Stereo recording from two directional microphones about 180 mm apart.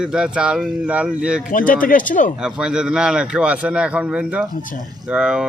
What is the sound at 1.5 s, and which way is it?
Speech, 50° left (ahead or behind).